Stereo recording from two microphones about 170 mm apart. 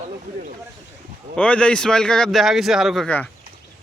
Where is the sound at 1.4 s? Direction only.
5° left (ahead or behind).